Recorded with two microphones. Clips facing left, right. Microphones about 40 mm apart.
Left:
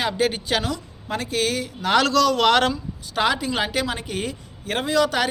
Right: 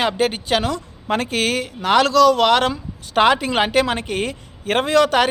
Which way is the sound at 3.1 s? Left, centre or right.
Right.